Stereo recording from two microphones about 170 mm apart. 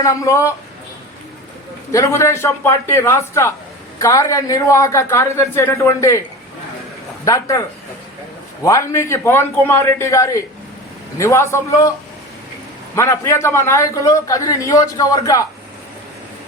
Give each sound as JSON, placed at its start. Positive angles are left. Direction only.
{"t": 0.0, "sound": "a man's voice", "side_deg": 20}
{"t": 1.9, "sound": "a man's voice", "side_deg": 20}
{"t": 7.3, "sound": "a man's voice", "side_deg": 20}
{"t": 8.6, "sound": "a man's voice", "side_deg": 20}
{"t": 13.0, "sound": "a man's voice", "side_deg": 15}